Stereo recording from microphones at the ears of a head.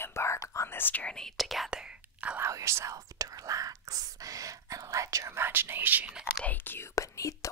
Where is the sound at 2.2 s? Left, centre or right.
Right.